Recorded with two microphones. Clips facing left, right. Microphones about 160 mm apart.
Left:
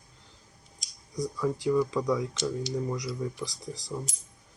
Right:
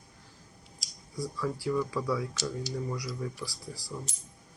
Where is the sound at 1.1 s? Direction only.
20° left (ahead or behind).